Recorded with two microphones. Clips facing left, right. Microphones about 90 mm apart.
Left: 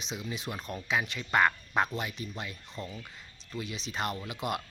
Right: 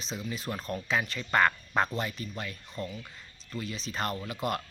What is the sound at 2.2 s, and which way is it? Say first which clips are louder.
Speech: right 1 dB; 20° left (ahead or behind).